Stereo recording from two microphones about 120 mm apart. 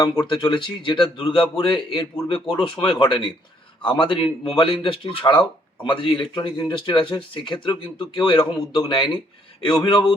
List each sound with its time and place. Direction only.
0.0 s speech: 40° left (ahead or behind)